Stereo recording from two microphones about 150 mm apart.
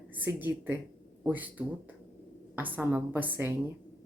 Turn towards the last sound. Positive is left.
turn(degrees=-15)  # may be behind; listen again after turning